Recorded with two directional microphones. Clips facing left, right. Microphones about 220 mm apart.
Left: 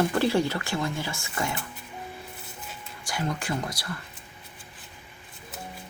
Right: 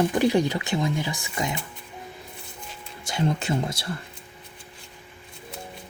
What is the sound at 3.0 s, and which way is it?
Speech, 25° right (ahead or behind).